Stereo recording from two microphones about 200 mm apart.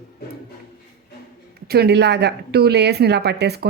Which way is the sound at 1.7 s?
55° right (ahead or behind).